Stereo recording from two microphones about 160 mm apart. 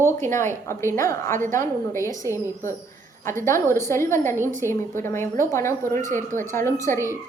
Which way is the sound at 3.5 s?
15° left (ahead or behind).